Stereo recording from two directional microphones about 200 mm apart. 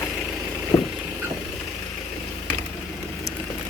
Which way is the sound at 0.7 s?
15° left (ahead or behind).